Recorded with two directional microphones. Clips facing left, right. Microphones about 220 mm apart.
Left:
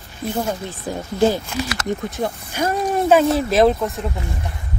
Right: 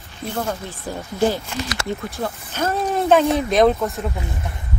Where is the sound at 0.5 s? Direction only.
15° left (ahead or behind).